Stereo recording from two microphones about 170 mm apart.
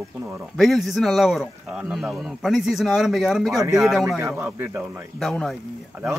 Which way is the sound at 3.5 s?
20° right (ahead or behind).